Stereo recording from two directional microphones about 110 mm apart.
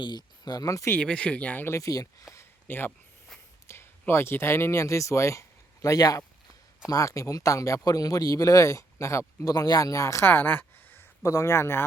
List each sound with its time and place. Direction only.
0.0 s speech: 40° left (ahead or behind)
0.9 s speech: 10° left (ahead or behind)